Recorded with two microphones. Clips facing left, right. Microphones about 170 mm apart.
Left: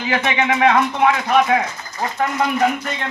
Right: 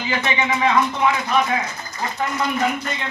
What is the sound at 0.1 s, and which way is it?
Speech, 65° left (ahead or behind).